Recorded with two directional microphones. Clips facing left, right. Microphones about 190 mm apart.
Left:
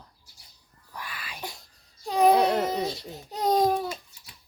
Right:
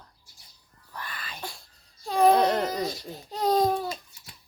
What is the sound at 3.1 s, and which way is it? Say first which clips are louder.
Speech: even; 15° left (ahead or behind).